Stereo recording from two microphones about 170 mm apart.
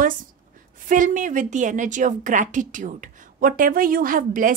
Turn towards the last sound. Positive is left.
turn(degrees=-55)  # may be behind; listen again after turning